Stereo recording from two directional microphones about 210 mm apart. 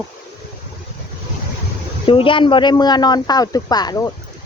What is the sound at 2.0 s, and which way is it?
Speech, 25° left (ahead or behind).